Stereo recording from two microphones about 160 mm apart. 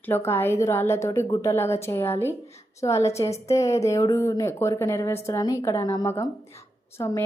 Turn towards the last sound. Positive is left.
turn(degrees=15)  # may be behind; listen again after turning